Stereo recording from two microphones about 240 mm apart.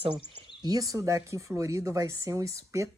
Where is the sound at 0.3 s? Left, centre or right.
Centre.